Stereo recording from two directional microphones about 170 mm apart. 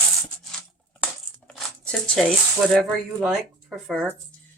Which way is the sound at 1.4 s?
5° left (ahead or behind).